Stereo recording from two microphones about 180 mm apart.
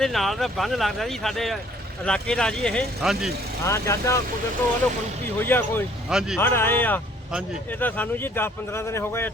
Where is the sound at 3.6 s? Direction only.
15° left (ahead or behind).